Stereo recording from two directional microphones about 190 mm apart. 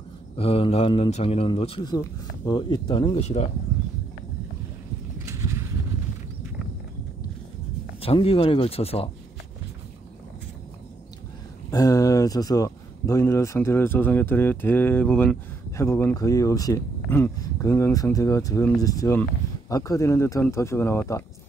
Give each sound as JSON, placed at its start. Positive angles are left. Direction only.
{"t": 0.4, "sound": "a man's voice", "side_deg": 30}
{"t": 3.2, "sound": "speech", "side_deg": 35}
{"t": 5.2, "sound": "a sound", "side_deg": -15}
{"t": 8.0, "sound": "speech", "side_deg": 30}
{"t": 11.7, "sound": "speech", "side_deg": 20}